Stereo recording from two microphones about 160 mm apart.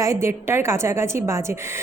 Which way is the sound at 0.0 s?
15° right (ahead or behind).